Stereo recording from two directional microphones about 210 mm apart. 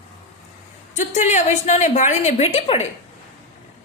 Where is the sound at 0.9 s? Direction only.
35° left (ahead or behind).